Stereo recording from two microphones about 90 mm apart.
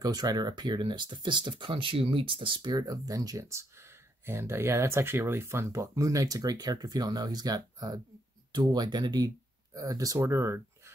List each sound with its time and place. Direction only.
0.0 s speech: 50° right (ahead or behind)
10.1 s speech: 30° right (ahead or behind)